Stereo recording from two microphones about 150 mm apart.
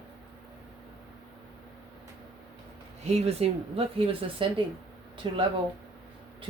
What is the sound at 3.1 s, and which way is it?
Speech, 45° right (ahead or behind).